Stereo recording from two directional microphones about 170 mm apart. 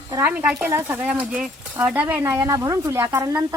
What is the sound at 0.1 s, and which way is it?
Speech, 10° right (ahead or behind).